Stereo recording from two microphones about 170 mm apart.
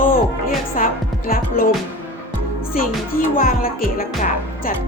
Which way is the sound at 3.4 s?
55° left (ahead or behind).